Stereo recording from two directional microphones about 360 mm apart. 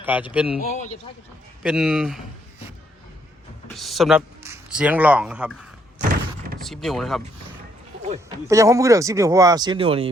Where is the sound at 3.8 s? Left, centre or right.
Centre.